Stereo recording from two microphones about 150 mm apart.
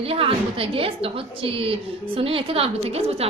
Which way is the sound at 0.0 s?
40° right (ahead or behind).